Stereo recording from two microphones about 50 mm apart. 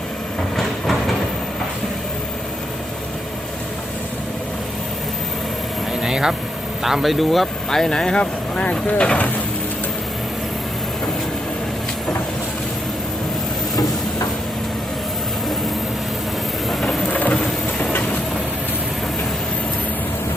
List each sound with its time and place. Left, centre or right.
5.9 s vehicle: centre
6.8 s speech: centre; by 9.3 s left
17.1 s rain: left